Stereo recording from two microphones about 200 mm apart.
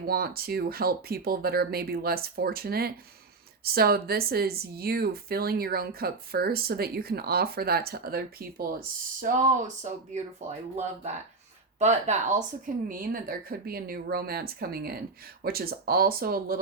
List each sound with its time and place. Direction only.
0.0 s speech: 50° right (ahead or behind)
9.2 s speech: 40° right (ahead or behind)
11.8 s speech: 35° right (ahead or behind)